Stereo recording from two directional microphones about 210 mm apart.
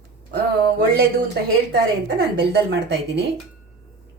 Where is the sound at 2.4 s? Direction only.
50° right (ahead or behind).